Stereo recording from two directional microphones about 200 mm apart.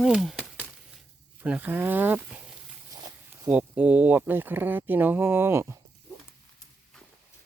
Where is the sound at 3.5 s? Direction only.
5° right (ahead or behind).